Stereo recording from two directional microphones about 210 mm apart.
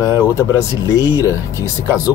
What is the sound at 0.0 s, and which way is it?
Speech, 15° left (ahead or behind).